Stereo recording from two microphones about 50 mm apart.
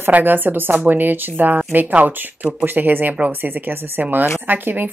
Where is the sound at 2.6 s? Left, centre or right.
Right.